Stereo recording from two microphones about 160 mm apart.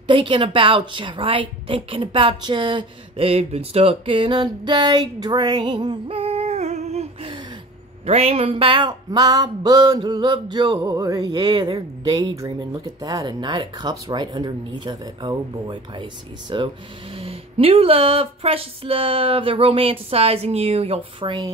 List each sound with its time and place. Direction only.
0.0 s a woman's voice: 30° right (ahead or behind)